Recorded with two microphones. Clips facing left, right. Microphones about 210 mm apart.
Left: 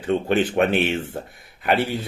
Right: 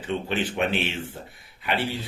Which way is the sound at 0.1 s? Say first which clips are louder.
Left 7 dB; 50° left (ahead or behind).